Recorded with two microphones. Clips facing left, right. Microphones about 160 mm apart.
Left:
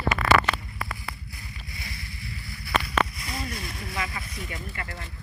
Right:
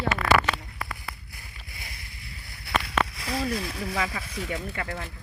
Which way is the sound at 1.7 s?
55° right (ahead or behind).